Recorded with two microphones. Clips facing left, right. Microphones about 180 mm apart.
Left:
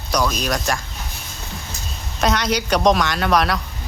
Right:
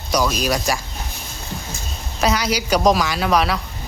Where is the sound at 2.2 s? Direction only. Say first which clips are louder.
Even; 5° right (ahead or behind).